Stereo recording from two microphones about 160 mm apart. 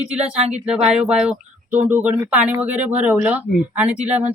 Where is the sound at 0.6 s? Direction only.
5° right (ahead or behind).